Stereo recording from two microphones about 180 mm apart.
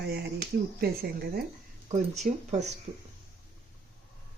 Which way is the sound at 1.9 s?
40° right (ahead or behind).